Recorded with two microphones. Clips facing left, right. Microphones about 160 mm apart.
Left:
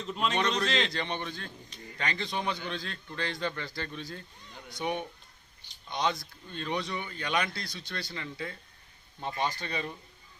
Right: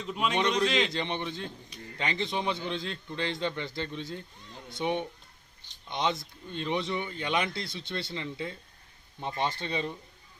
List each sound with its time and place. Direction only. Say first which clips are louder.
0.0 s a man's voice: right 1 dB; 10° right (ahead or behind)